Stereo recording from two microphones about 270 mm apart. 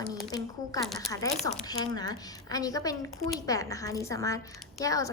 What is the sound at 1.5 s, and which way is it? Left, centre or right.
A woman's voice, centre.